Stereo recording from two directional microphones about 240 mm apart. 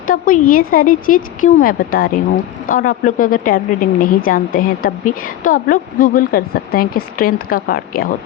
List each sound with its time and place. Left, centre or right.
0.1 s a woman's voice: left